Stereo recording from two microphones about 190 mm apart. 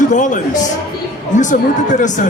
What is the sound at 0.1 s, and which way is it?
A man's voice, 40° left (ahead or behind).